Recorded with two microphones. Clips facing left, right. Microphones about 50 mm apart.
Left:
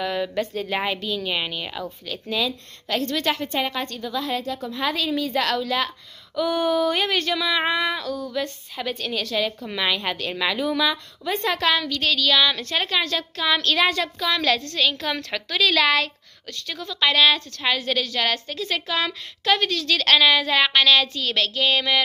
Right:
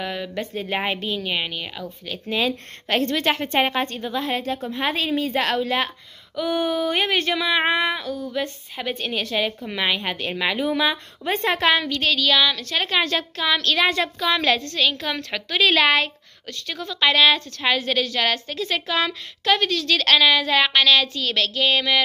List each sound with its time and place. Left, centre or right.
0.0 s speech: centre
0.5 s speech: centre
2.4 s speech: right
3.1 s a woman's voice: right
3.3 s a woman's voice: right
6.3 s a woman's voice: centre
12.1 s speech: centre
12.9 s a woman's voice: right
13.4 s a woman's voice: centre
13.9 s speech: centre
14.6 s a woman's voice: centre
15.6 s a woman's voice: right; by 22.0 s centre